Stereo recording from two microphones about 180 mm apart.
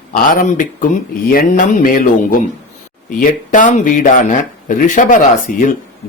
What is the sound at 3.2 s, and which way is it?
Speech, 45° left (ahead or behind).